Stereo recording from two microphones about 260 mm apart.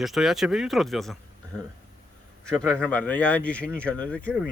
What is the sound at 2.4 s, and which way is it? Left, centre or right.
A man's voice, centre.